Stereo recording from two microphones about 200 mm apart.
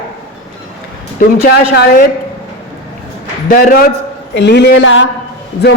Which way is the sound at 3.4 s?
45° left (ahead or behind).